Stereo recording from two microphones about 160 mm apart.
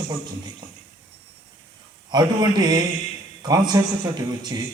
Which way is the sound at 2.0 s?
25° right (ahead or behind).